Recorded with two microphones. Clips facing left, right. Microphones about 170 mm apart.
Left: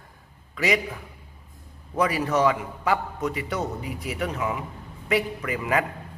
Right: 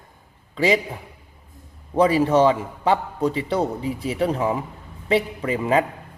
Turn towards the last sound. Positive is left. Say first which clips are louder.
# right 5 dB
turn(degrees=-25)  # may be behind; listen again after turning